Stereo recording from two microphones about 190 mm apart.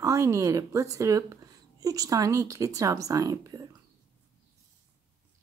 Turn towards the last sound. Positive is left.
turn(degrees=-20)  # may be behind; listen again after turning